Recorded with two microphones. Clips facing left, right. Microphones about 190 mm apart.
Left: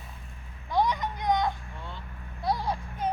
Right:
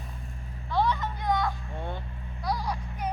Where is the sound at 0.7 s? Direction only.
15° left (ahead or behind).